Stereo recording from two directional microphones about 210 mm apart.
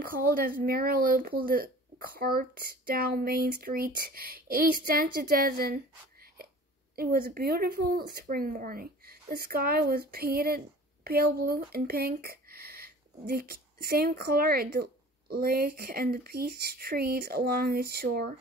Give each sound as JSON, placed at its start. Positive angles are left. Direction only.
{"t": 0.0, "sound": "speech", "side_deg": -45}